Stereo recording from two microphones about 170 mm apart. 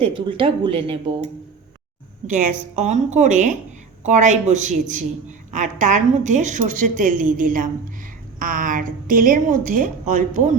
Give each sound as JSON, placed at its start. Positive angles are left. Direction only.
{"t": 0.0, "sound": "speech", "side_deg": -30}
{"t": 2.2, "sound": "a woman's voice", "side_deg": -45}